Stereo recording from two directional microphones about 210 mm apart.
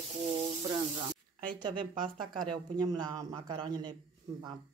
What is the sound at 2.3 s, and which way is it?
Speech, 20° right (ahead or behind).